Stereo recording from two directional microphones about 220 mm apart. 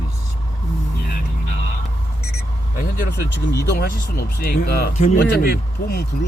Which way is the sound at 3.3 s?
50° left (ahead or behind).